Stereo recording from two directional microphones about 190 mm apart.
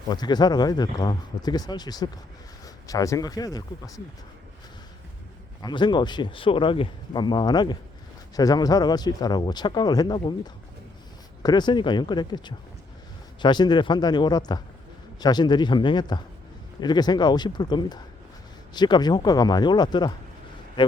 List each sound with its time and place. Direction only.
0.1 s speech: 20° left (ahead or behind)
5.6 s speech: 25° left (ahead or behind)